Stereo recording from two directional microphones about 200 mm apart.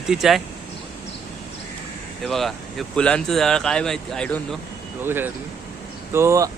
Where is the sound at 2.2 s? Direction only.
Centre (ahead or behind).